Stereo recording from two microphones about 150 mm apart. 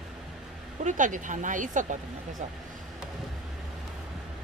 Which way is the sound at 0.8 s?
60° right (ahead or behind).